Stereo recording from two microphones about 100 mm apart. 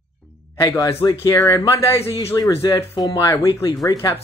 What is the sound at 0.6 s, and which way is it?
Speech, 35° left (ahead or behind).